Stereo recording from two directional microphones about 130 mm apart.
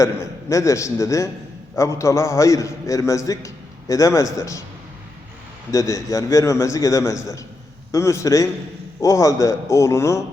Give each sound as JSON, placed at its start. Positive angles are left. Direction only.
{"t": 0.0, "sound": "a man's voice", "side_deg": 25}
{"t": 5.7, "sound": "a man's voice", "side_deg": 25}